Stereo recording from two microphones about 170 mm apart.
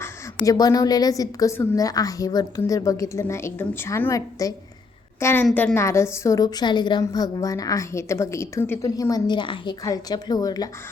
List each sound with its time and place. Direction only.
0.0 s a woman's voice: 20° left (ahead or behind)